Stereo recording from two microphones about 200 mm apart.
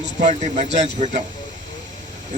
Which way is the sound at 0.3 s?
35° right (ahead or behind).